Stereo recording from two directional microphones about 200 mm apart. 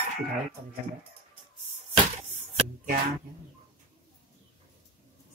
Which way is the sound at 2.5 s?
40° right (ahead or behind).